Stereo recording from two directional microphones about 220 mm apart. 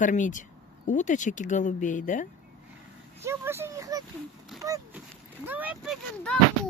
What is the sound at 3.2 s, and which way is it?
Speech, 10° right (ahead or behind).